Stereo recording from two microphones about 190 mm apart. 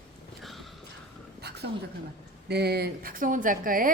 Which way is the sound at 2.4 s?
60° right (ahead or behind).